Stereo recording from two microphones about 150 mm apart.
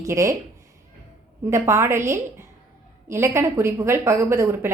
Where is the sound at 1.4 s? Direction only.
20° right (ahead or behind).